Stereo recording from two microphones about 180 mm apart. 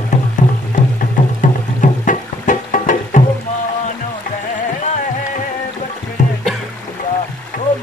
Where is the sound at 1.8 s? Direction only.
45° left (ahead or behind).